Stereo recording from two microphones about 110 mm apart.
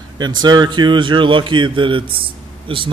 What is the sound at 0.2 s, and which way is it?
A man's voice, 40° right (ahead or behind).